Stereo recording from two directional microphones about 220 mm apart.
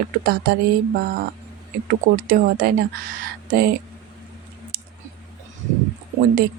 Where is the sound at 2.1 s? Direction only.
40° right (ahead or behind).